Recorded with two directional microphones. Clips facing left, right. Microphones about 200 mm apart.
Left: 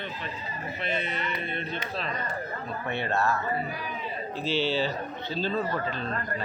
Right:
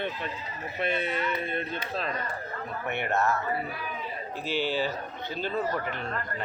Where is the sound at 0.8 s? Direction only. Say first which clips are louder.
Right 4 dB; 50° right (ahead or behind).